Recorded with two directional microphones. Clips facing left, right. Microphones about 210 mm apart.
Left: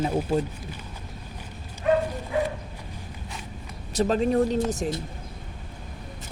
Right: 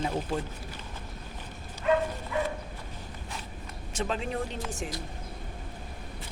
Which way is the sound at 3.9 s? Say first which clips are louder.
Left 10 dB; 40° left (ahead or behind).